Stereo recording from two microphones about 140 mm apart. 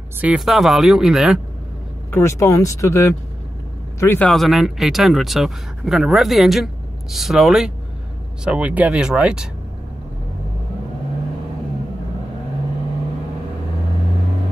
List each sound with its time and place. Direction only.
0.2 s speech: 5° right (ahead or behind)
2.0 s speech: 20° left (ahead or behind)
4.3 s speech: centre (ahead or behind)